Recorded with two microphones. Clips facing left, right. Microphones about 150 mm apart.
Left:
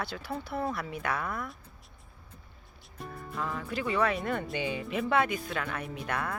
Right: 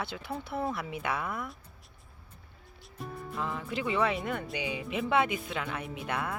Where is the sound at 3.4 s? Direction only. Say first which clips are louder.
Even; 20° right (ahead or behind).